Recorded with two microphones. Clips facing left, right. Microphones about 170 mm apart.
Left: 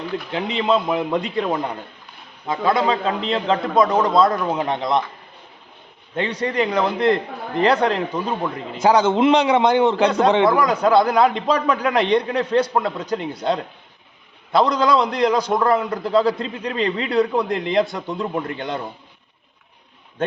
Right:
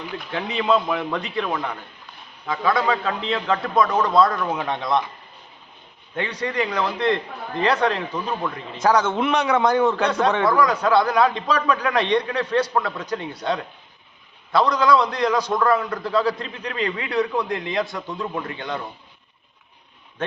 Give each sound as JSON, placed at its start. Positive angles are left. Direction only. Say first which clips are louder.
{"t": 0.3, "sound": "a man's voice", "louder": "left 1 dB", "side_deg": 25}
{"t": 6.1, "sound": "a man's voice", "louder": "left 3 dB", "side_deg": 30}